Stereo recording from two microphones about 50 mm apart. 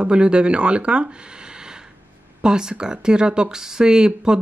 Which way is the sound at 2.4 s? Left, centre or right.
Centre.